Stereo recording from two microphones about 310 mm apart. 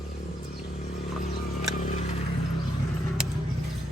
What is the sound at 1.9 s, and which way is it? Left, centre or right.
Vehicle, left.